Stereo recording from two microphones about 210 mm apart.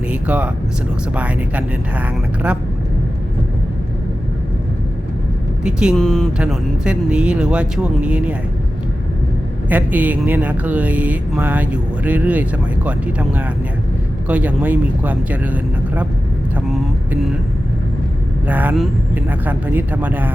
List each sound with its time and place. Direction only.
0.1 s speech: 5° right (ahead or behind)
5.6 s speech: 5° right (ahead or behind)
9.6 s speech: 10° right (ahead or behind)
16.6 s speech: centre (ahead or behind)
18.4 s speech: 5° right (ahead or behind)